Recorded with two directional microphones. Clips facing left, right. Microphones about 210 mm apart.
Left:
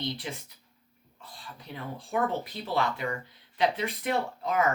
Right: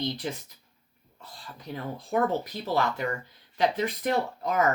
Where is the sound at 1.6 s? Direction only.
40° right (ahead or behind).